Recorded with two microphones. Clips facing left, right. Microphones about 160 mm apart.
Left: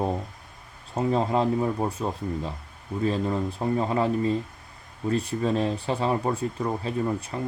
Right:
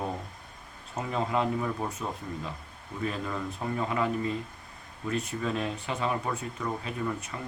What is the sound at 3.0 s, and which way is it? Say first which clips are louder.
Speech: left 7 dB; 30° left (ahead or behind).